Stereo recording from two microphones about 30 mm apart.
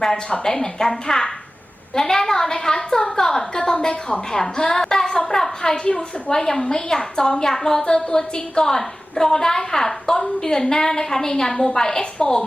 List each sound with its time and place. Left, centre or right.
0.4 s a woman's voice: centre